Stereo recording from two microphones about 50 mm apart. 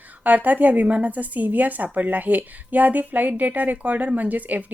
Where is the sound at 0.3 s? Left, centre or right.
Right.